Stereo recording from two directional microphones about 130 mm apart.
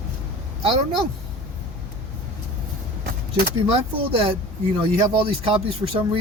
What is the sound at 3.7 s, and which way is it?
Speech, 45° right (ahead or behind).